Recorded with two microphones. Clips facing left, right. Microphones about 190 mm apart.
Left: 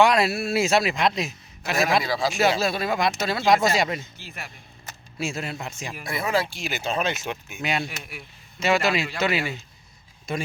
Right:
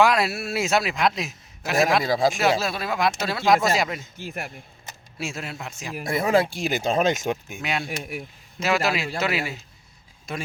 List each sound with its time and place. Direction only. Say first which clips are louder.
0.0 s a man's voice: left 1 dB; centre (ahead or behind)
2.0 s speech: right 4 dB; 50° right (ahead or behind)
2.4 s a man's voice: left 1 dB; centre (ahead or behind)
4.2 s speech: right 7 dB; 50° right (ahead or behind)
5.1 s a man's voice: left 3 dB; centre (ahead or behind)
6.0 s speech: right 5 dB; 50° right (ahead or behind)
7.6 s a man's voice: even; centre (ahead or behind)